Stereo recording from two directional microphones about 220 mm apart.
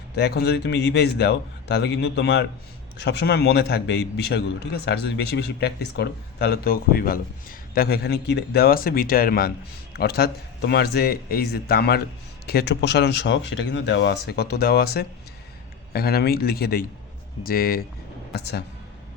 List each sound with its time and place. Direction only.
0.2 s a man's voice: 50° left (ahead or behind)